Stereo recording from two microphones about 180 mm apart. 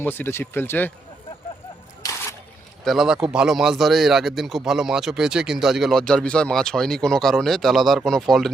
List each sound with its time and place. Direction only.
0.0 s speech: 10° left (ahead or behind)
2.0 s single-lens reflex camera: 20° left (ahead or behind)
2.8 s speech: centre (ahead or behind)